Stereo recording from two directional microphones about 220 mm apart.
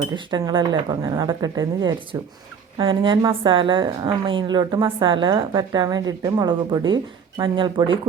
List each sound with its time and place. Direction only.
0.1 s a woman's voice: 20° right (ahead or behind)